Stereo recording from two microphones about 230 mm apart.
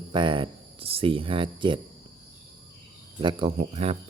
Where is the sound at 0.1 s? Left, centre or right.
Right.